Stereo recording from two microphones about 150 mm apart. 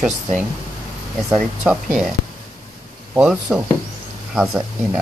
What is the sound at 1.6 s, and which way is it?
Speech, 5° right (ahead or behind).